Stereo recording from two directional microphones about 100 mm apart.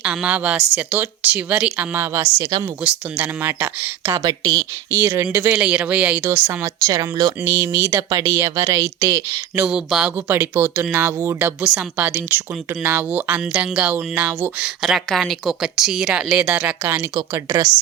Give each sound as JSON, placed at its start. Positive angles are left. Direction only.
{"t": 0.0, "sound": "speech", "side_deg": -10}
{"t": 2.8, "sound": "speech", "side_deg": -10}
{"t": 4.2, "sound": "speech", "side_deg": -45}
{"t": 5.0, "sound": "speech", "side_deg": -25}
{"t": 6.2, "sound": "speech", "side_deg": -25}
{"t": 6.7, "sound": "speech", "side_deg": -35}
{"t": 9.6, "sound": "speech", "side_deg": -5}
{"t": 10.2, "sound": "speech", "side_deg": -20}
{"t": 11.6, "sound": "speech", "side_deg": -5}
{"t": 11.9, "sound": "speech", "side_deg": -20}
{"t": 14.6, "sound": "speech", "side_deg": -5}
{"t": 17.3, "sound": "speech", "side_deg": -30}